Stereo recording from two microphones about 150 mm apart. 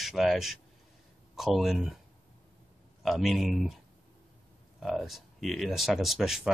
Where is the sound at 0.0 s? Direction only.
Centre (ahead or behind).